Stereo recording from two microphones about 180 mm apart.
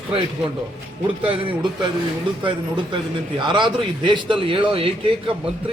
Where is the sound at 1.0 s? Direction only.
30° right (ahead or behind).